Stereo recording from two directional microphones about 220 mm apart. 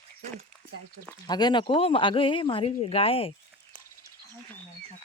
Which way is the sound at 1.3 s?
20° left (ahead or behind).